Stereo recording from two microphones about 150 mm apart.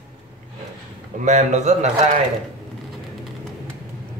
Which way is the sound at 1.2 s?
50° right (ahead or behind).